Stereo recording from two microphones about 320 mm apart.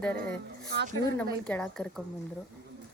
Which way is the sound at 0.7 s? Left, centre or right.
Right.